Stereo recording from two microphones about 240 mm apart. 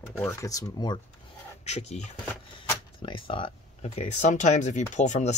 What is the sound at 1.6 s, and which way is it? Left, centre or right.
Speech, left.